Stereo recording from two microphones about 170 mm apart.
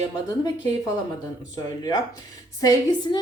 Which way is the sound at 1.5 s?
25° left (ahead or behind).